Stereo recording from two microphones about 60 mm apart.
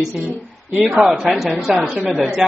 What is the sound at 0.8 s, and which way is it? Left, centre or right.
A woman's voice, centre.